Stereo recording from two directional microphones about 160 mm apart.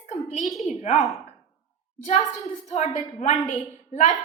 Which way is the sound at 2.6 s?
45° left (ahead or behind).